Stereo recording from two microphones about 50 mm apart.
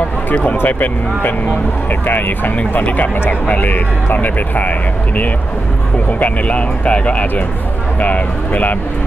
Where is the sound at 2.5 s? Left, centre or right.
Left.